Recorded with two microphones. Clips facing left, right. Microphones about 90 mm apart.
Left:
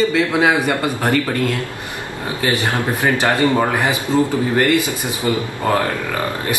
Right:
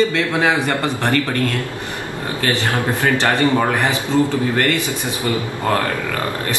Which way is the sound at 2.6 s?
15° left (ahead or behind).